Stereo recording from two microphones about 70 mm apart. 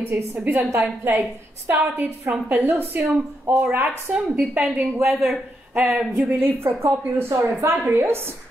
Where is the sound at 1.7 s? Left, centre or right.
Right.